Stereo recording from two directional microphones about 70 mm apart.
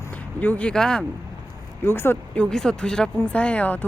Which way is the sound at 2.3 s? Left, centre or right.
Centre.